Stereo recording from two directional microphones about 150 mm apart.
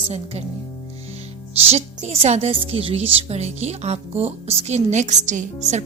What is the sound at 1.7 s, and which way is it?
A woman's voice, 45° right (ahead or behind).